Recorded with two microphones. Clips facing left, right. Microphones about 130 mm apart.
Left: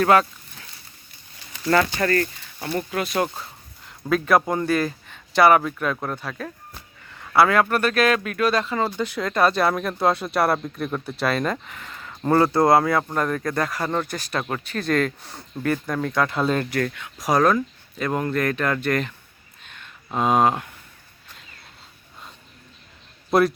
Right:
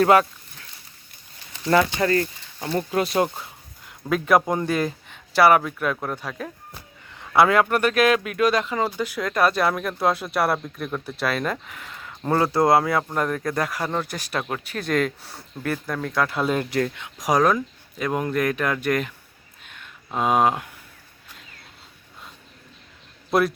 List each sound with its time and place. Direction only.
0.0 s speech: 20° right (ahead or behind)
1.6 s speech: 20° right (ahead or behind)
3.2 s a sound: 15° right (ahead or behind)
4.1 s speech: 15° right (ahead or behind)
16.6 s speech: 20° right (ahead or behind)
19.6 s a sound: 5° right (ahead or behind)
23.3 s speech: centre (ahead or behind)